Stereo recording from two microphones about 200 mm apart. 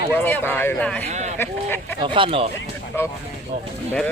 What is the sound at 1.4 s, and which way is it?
Speech, 10° left (ahead or behind).